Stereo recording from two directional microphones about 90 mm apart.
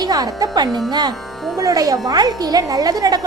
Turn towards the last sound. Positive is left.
turn(degrees=-45)  # may be behind; listen again after turning